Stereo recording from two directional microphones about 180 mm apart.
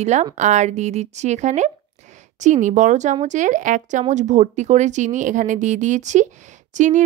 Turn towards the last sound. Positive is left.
turn(degrees=-40)  # may be behind; listen again after turning